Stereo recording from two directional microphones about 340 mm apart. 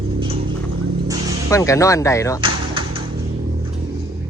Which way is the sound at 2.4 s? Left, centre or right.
Centre.